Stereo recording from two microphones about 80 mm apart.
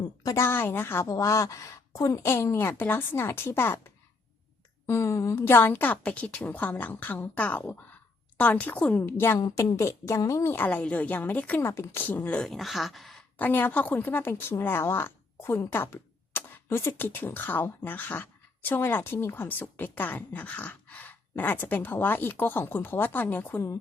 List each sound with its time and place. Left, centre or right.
0.3 s speech: left
1.0 s speech: left
5.4 s speech: left
9.0 s speech: left
9.4 s a woman's voice: left
9.7 s speech: left
10.7 s speech: centre
11.6 s speech: left
12.0 s speech: centre
12.4 s speech: centre
13.4 s speech: left